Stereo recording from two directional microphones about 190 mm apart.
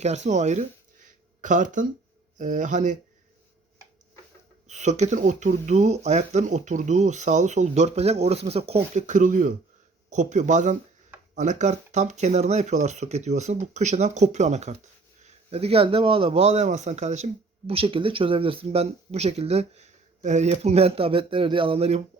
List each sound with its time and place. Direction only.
0.0 s speech: 35° right (ahead or behind)
1.0 s a sound: 40° right (ahead or behind)
2.4 s speech: 40° right (ahead or behind)
4.7 s speech: 40° right (ahead or behind)